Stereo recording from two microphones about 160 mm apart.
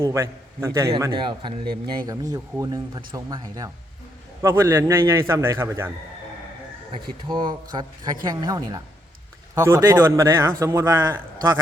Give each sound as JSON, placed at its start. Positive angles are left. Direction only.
{"t": 0.1, "sound": "a man's voice", "side_deg": -20}
{"t": 7.3, "sound": "a man's voice", "side_deg": -30}